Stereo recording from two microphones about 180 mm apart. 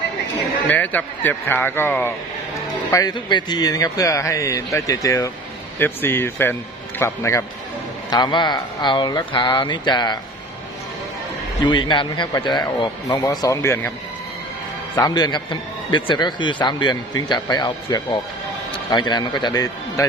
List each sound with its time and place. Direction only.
0.7 s a man's voice: 10° left (ahead or behind)
2.9 s a man's voice: 20° left (ahead or behind)
11.6 s a man's voice: 25° left (ahead or behind)
14.9 s a man's voice: 20° left (ahead or behind)